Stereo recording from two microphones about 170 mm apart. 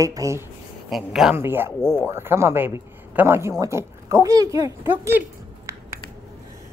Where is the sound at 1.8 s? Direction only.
5° left (ahead or behind).